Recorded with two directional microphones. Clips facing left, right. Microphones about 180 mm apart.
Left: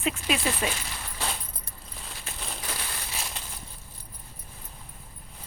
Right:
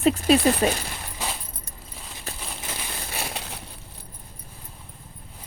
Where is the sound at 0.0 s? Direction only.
40° right (ahead or behind).